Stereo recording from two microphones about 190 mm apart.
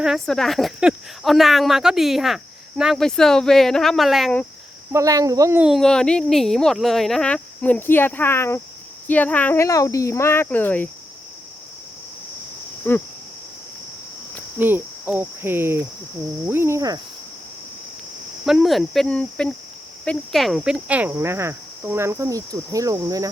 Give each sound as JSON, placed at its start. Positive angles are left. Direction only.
{"t": 0.0, "sound": "speech", "side_deg": 0}
{"t": 4.9, "sound": "speech", "side_deg": -15}
{"t": 5.6, "sound": "speech", "side_deg": 0}
{"t": 12.9, "sound": "speech", "side_deg": 10}
{"t": 14.6, "sound": "speech", "side_deg": -10}
{"t": 18.4, "sound": "speech", "side_deg": 0}